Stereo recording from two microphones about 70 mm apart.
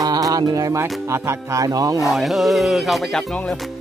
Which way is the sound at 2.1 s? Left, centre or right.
Centre.